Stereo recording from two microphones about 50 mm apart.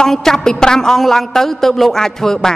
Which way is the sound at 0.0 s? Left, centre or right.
Centre.